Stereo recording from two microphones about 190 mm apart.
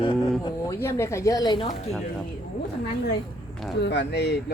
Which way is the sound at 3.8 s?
65° left (ahead or behind).